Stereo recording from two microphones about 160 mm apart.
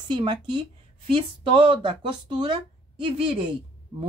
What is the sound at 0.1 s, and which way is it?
A woman's voice, 30° right (ahead or behind).